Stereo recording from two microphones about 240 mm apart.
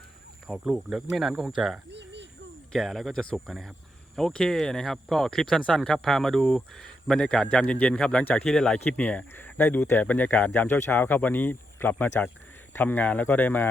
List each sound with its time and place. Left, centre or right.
0.4 s speech: centre
1.9 s a sound: right
2.7 s speech: centre